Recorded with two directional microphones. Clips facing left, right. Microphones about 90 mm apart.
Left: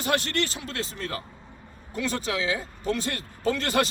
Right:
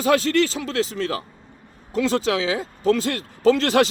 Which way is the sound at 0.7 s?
90° right.